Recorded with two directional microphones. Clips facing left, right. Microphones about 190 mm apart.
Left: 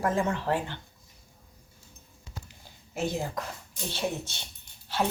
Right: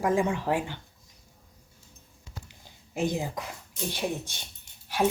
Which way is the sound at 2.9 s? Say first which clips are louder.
Right 2 dB; 15° right (ahead or behind).